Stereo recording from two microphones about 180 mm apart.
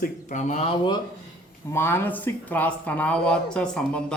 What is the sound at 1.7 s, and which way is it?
A man's voice, 15° left (ahead or behind).